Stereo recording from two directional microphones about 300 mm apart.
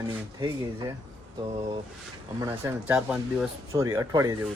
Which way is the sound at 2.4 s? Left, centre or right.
Centre.